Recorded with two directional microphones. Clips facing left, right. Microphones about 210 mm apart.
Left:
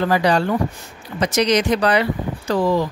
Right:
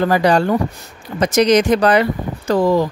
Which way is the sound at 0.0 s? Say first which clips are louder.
Right 3 dB; 45° right (ahead or behind).